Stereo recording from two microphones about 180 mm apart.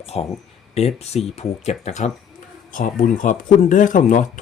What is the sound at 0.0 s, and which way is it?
Speech, 35° left (ahead or behind).